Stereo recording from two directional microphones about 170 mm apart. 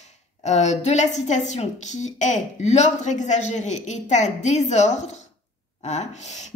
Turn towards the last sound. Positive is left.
turn(degrees=45)  # may be behind; listen again after turning